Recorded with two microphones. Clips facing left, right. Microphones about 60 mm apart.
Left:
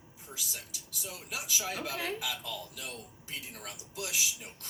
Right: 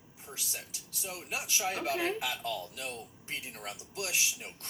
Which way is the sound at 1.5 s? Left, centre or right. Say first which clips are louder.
Right 4 dB; right.